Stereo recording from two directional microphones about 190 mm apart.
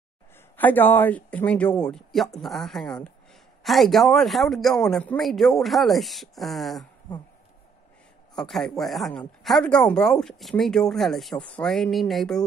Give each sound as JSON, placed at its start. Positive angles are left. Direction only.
{"t": 0.6, "sound": "speech", "side_deg": 10}
{"t": 8.4, "sound": "speech", "side_deg": 0}